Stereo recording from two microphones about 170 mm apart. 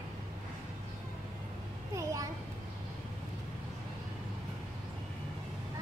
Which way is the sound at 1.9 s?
20° right (ahead or behind).